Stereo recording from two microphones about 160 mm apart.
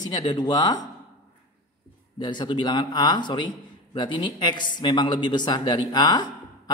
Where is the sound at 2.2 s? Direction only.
30° left (ahead or behind).